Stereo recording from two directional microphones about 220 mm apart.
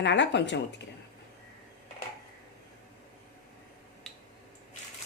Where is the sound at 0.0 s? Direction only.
55° left (ahead or behind).